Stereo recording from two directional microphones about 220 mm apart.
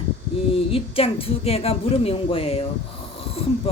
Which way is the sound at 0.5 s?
25° left (ahead or behind).